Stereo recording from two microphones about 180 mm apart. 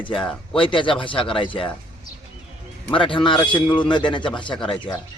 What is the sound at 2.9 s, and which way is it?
A man's voice, 30° left (ahead or behind).